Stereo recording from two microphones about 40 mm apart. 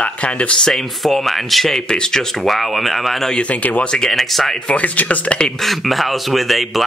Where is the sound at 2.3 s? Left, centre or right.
Centre.